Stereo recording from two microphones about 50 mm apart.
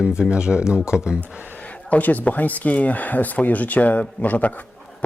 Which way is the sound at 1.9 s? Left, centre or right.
Left.